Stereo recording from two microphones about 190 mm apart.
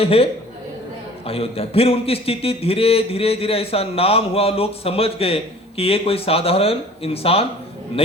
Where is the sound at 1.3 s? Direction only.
30° left (ahead or behind).